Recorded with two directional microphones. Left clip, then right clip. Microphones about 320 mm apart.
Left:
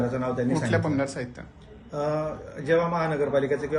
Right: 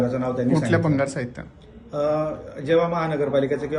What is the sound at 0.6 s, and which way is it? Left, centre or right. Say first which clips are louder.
Speech: right 4 dB; right.